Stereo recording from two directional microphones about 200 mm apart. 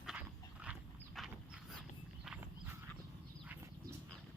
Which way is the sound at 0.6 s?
5° right (ahead or behind).